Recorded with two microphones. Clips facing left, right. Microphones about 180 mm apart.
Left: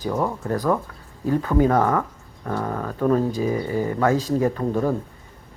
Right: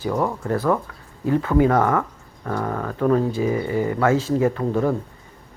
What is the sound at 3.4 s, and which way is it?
Speech, 15° right (ahead or behind).